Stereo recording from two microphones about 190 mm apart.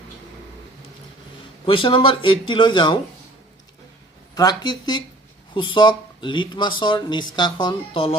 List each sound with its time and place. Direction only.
1.7 s speech: 25° left (ahead or behind)
4.4 s speech: 20° left (ahead or behind)